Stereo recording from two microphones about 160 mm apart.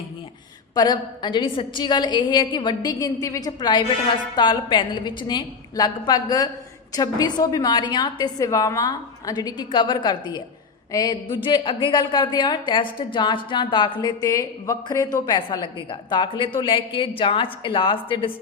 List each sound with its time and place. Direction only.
0.7 s a woman's voice: 25° left (ahead or behind)